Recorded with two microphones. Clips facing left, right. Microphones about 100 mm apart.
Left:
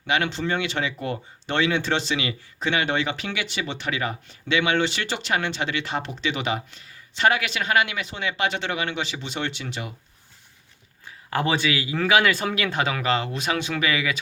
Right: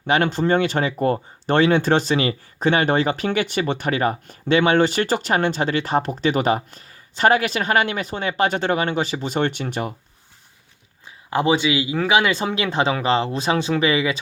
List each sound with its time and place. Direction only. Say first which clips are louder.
0.1 s speech: right 6 dB; 45° right (ahead or behind)
11.3 s speech: right 5 dB; 20° right (ahead or behind)